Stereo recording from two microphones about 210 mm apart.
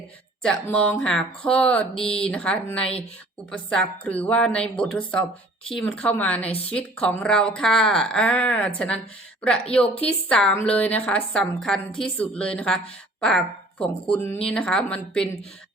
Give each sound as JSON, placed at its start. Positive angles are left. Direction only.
{"t": 0.4, "sound": "speech", "side_deg": 5}
{"t": 6.4, "sound": "speech", "side_deg": 30}
{"t": 6.7, "sound": "speech", "side_deg": 5}